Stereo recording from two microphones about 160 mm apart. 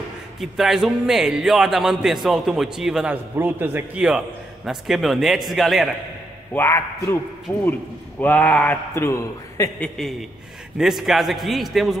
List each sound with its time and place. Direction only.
0.4 s speech: centre (ahead or behind)
6.5 s a man's voice: 15° left (ahead or behind)
8.2 s a man's voice: 10° left (ahead or behind)
10.8 s speech: centre (ahead or behind)